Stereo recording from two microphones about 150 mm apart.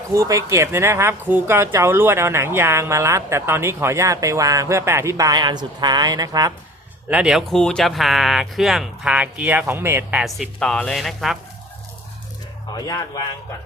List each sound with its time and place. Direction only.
0.1 s speech: 20° right (ahead or behind)
7.1 s speech: 5° right (ahead or behind)
10.2 s speech: centre (ahead or behind)
12.7 s speech: 25° left (ahead or behind)